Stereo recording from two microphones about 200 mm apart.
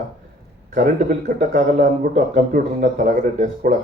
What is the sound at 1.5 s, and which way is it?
Speech, 45° right (ahead or behind).